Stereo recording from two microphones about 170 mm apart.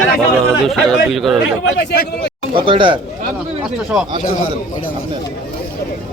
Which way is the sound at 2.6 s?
30° right (ahead or behind).